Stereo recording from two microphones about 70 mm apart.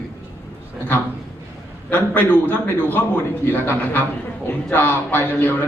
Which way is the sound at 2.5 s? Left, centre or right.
Left.